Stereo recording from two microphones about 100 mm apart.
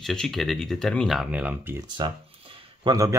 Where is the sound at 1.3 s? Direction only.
15° right (ahead or behind).